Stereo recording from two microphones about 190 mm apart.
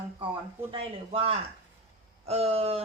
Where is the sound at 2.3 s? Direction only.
35° right (ahead or behind).